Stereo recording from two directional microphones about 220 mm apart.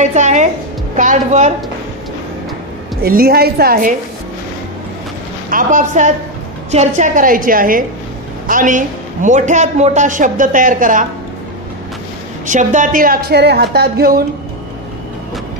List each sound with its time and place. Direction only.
0.0 s a man's voice: 35° right (ahead or behind)
3.0 s a woman's voice: 45° right (ahead or behind)
5.5 s a man's voice: 40° right (ahead or behind)
12.4 s a woman's voice: 35° right (ahead or behind)